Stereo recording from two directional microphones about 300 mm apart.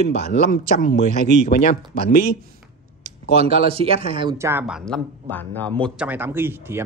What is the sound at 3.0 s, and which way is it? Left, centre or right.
Speech, right.